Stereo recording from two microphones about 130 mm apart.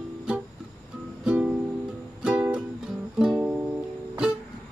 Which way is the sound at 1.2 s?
10° right (ahead or behind).